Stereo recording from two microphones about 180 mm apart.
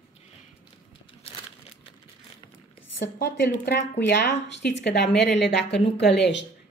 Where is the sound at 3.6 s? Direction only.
70° left (ahead or behind).